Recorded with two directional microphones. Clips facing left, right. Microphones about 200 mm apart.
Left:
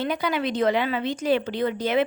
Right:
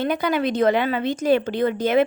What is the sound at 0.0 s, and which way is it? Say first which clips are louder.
A woman's voice: right 4 dB; 50° right (ahead or behind).